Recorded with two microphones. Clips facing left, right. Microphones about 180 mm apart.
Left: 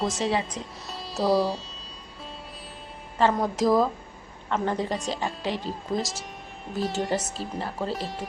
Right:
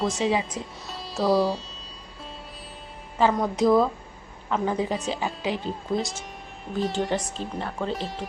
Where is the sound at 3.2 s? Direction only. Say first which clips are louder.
Right 1 dB; centre (ahead or behind).